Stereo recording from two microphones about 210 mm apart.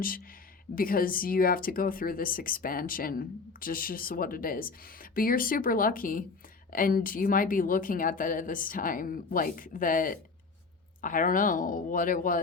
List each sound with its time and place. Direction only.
0.8 s a woman's voice: 45° left (ahead or behind)